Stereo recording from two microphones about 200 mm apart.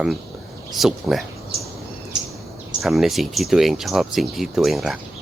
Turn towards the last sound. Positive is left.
turn(degrees=0)  # may be behind; listen again after turning